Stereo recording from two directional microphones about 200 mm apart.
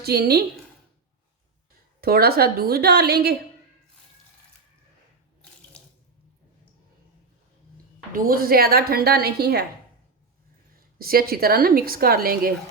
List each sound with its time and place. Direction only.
0.0 s a woman's voice: 50° right (ahead or behind)
2.0 s a woman's voice: 50° right (ahead or behind)
5.7 s sink: 5° left (ahead or behind)
8.1 s a woman's voice: 45° right (ahead or behind)
10.9 s a woman's voice: 50° right (ahead or behind)